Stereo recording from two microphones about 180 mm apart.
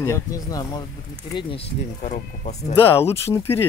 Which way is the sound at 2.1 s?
40° left (ahead or behind).